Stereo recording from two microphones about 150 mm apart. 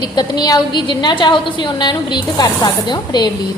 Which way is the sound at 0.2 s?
25° left (ahead or behind).